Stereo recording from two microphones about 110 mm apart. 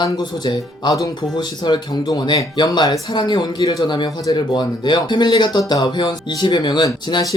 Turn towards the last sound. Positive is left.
turn(degrees=35)  # may be behind; listen again after turning